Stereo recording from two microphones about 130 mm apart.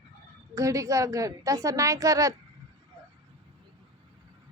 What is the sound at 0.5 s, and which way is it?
A woman's voice, 25° right (ahead or behind).